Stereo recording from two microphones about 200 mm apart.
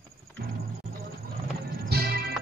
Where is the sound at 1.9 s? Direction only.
50° right (ahead or behind).